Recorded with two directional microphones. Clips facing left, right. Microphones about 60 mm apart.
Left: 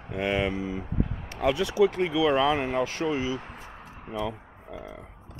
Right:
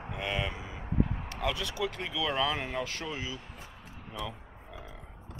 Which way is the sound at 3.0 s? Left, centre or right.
Left.